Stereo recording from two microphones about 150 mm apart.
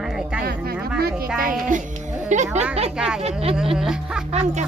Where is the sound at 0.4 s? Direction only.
90° right.